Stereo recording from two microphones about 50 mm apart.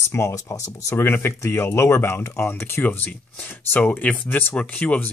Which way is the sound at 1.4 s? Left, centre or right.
Left.